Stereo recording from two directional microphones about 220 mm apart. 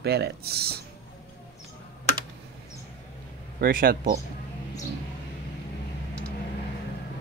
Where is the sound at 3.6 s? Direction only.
40° right (ahead or behind).